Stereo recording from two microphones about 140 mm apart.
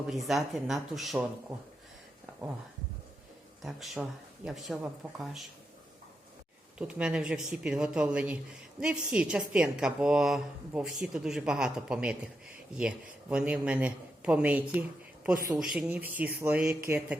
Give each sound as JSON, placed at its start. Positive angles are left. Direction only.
{"t": 0.1, "sound": "a woman's voice", "side_deg": 0}
{"t": 3.6, "sound": "a woman's voice", "side_deg": 0}
{"t": 6.7, "sound": "a woman's voice", "side_deg": -5}